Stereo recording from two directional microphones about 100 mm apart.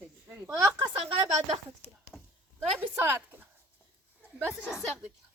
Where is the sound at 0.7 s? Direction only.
50° right (ahead or behind).